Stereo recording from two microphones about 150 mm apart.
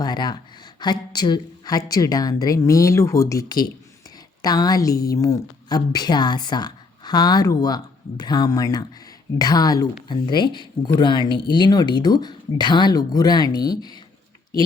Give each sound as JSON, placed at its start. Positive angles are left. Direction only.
{"t": 0.0, "sound": "speech", "side_deg": 30}